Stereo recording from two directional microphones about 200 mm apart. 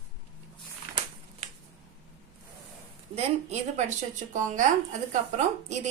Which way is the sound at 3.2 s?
35° right (ahead or behind).